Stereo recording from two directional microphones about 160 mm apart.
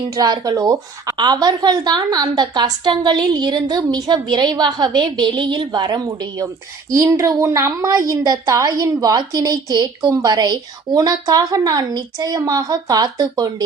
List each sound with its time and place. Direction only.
0.0 s a woman's voice: 25° right (ahead or behind)